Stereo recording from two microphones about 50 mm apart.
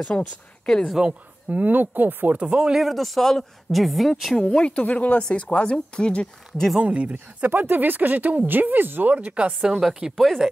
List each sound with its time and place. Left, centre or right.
0.1 s speech: left
0.7 s speech: centre
1.5 s speech: right
2.4 s speech: centre
2.8 s a woman's voice: centre
4.6 s speech: left
6.8 s speech: right
7.4 s speech: right
9.6 s speech: centre
10.1 s a woman's voice: centre